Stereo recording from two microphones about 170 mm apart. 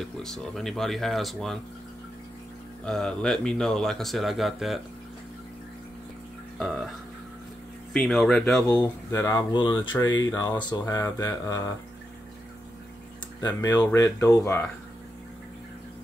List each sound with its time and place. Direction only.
0.0 s speech: centre (ahead or behind)
2.8 s speech: 5° left (ahead or behind)
7.9 s speech: 5° left (ahead or behind)
8.8 s speech: 15° left (ahead or behind)
13.4 s speech: 20° left (ahead or behind)